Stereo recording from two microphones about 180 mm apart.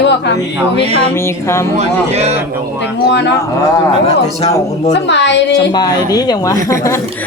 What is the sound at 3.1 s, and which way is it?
Speech, 75° left (ahead or behind).